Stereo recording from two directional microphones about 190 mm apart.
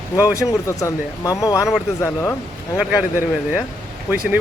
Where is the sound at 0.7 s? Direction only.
15° left (ahead or behind).